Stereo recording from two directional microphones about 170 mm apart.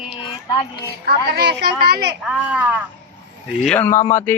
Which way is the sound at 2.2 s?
5° right (ahead or behind).